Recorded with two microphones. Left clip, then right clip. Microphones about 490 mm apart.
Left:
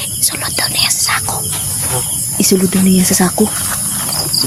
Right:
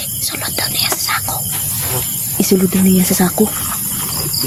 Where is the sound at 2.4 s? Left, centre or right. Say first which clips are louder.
Left 1 dB; right.